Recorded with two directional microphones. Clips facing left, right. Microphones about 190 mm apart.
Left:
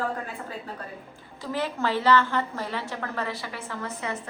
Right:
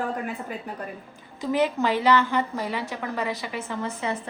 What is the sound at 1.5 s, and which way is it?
A woman's voice, 15° right (ahead or behind).